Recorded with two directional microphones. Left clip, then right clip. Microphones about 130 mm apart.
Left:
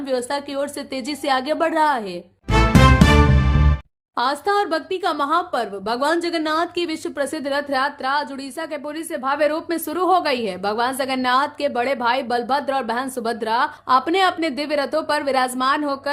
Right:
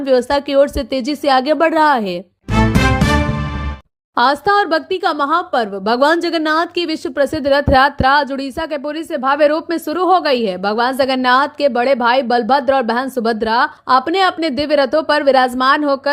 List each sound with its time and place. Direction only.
0.1 s speech: 50° right (ahead or behind)
4.2 s speech: 45° right (ahead or behind)
8.7 s a woman's voice: 40° right (ahead or behind)